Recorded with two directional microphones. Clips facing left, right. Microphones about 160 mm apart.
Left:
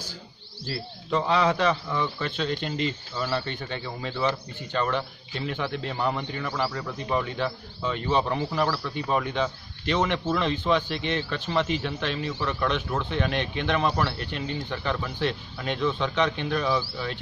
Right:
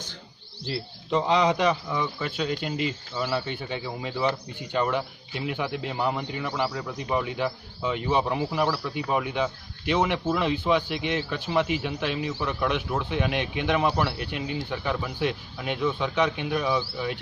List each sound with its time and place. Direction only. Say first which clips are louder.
0.7 s speech: right 1 dB; 20° right (ahead or behind)